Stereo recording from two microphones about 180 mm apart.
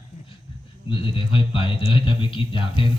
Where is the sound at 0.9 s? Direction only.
30° left (ahead or behind).